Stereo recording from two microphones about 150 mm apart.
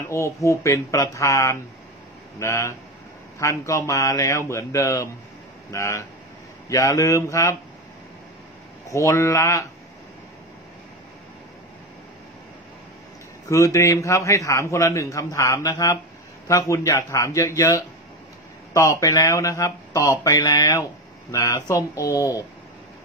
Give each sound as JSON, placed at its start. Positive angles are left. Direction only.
{"t": 0.1, "sound": "a man's voice", "side_deg": 20}
{"t": 8.8, "sound": "a man's voice", "side_deg": 20}
{"t": 13.5, "sound": "a man's voice", "side_deg": 20}